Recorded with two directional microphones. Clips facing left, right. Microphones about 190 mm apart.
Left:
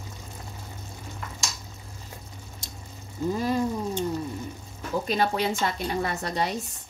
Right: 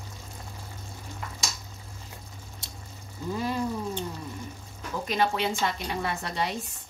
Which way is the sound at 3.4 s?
45° left (ahead or behind).